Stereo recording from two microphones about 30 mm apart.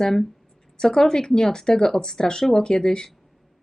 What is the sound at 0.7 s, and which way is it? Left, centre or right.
A woman's voice, centre.